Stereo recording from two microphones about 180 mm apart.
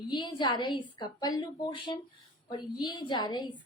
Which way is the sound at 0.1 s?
25° left (ahead or behind).